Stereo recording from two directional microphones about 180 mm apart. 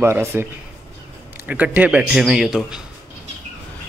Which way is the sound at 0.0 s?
10° right (ahead or behind).